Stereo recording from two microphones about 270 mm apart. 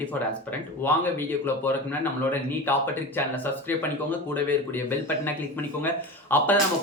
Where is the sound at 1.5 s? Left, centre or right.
Centre.